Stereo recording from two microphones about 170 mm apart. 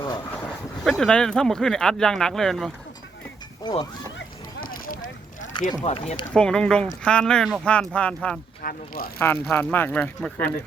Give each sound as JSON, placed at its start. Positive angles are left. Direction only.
{"t": 0.9, "sound": "speech", "side_deg": 5}
{"t": 3.6, "sound": "speech", "side_deg": 25}
{"t": 4.6, "sound": "a sound", "side_deg": 55}
{"t": 5.8, "sound": "speech", "side_deg": 35}
{"t": 6.3, "sound": "speech", "side_deg": 5}
{"t": 8.6, "sound": "speech", "side_deg": 60}
{"t": 9.1, "sound": "speech", "side_deg": 15}